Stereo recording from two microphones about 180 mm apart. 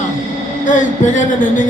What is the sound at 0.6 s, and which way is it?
Music, 45° left (ahead or behind).